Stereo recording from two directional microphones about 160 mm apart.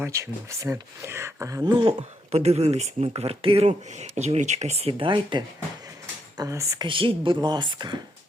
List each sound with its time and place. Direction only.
0.0 s speech: 20° right (ahead or behind)
2.0 s speech: 45° right (ahead or behind)
6.3 s speech: 20° right (ahead or behind)
6.8 s speech: 30° right (ahead or behind)